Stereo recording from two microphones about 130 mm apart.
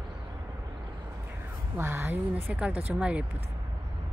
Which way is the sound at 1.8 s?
15° right (ahead or behind).